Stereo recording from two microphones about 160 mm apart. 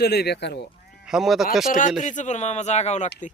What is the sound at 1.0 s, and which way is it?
Speech, centre (ahead or behind).